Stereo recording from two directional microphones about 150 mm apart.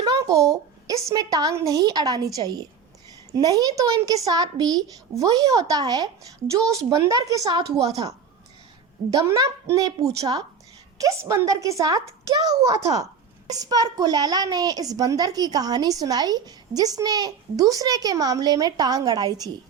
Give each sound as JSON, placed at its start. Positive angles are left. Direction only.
{"t": 0.0, "sound": "a child's voice", "side_deg": -25}
{"t": 9.1, "sound": "a woman's voice", "side_deg": -25}